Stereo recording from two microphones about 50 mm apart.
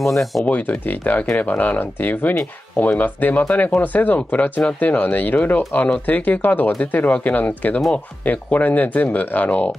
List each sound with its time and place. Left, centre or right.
0.0 s speech: centre
0.5 s speech: left